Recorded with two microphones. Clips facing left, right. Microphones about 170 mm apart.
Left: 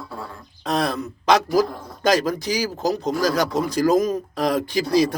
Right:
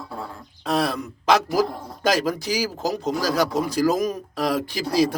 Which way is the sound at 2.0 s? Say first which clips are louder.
Left 2 dB; 10° right (ahead or behind).